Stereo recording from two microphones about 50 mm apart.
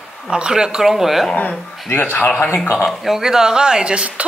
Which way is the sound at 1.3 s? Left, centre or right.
Left.